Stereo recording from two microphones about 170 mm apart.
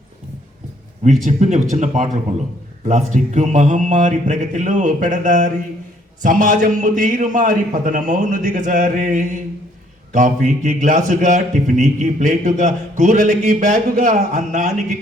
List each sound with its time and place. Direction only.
1.2 s a man's voice: 45° right (ahead or behind)